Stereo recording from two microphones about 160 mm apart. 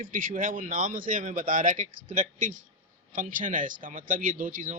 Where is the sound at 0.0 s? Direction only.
55° right (ahead or behind).